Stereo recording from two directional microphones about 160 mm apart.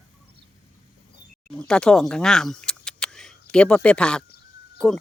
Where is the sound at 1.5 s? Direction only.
5° left (ahead or behind).